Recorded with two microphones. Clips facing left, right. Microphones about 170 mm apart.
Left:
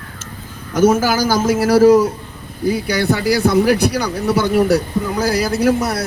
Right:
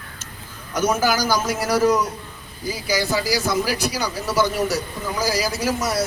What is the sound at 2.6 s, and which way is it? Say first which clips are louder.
A man's voice: left 7 dB; 60° left (ahead or behind).